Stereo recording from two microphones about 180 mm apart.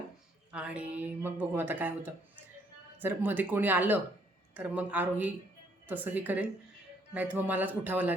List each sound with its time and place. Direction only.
0.5 s speech: 5° right (ahead or behind)